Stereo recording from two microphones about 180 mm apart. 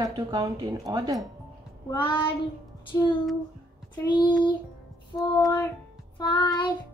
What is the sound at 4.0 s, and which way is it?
Child singing, 25° left (ahead or behind).